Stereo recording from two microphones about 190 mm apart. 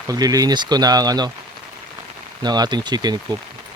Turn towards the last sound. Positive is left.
turn(degrees=-20)  # may be behind; listen again after turning